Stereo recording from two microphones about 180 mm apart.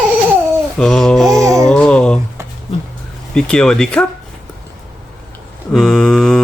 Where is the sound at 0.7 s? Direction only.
Centre (ahead or behind).